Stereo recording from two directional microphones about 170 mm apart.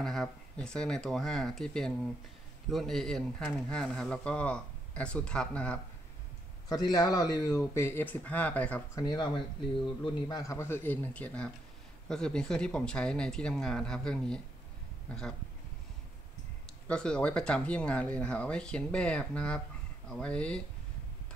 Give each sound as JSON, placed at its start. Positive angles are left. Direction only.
{"t": 0.0, "sound": "speech", "side_deg": 5}
{"t": 6.7, "sound": "speech", "side_deg": 20}
{"t": 8.9, "sound": "speech", "side_deg": 25}
{"t": 16.8, "sound": "speech", "side_deg": 5}